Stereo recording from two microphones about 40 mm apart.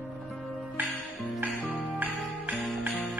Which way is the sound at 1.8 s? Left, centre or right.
Right.